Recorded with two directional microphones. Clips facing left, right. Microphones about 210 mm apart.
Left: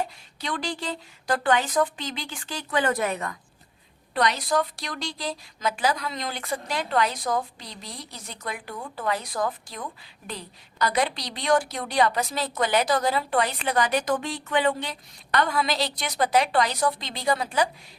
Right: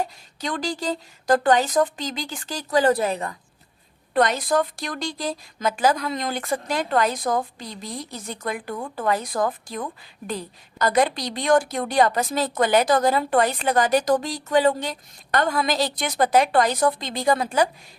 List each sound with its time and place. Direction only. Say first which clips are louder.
0.0 s speech: right 3 dB; 45° right (ahead or behind)
4.1 s a woman's voice: right 4 dB; 50° right (ahead or behind)